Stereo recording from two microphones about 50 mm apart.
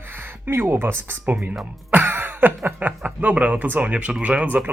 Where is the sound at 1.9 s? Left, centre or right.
Right.